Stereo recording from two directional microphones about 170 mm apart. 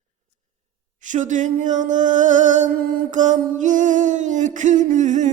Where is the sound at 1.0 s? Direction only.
45° right (ahead or behind).